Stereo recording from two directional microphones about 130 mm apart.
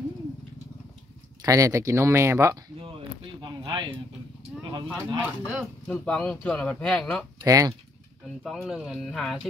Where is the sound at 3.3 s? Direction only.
35° right (ahead or behind).